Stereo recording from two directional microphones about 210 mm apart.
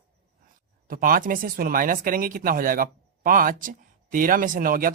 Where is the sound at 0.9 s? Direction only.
40° right (ahead or behind).